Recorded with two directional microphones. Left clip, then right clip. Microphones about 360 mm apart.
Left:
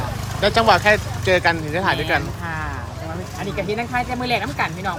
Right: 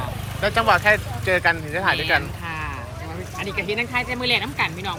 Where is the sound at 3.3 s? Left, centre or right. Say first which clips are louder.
Even; left.